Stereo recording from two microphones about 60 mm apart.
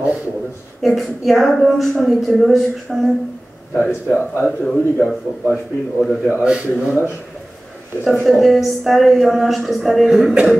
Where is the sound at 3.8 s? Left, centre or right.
Left.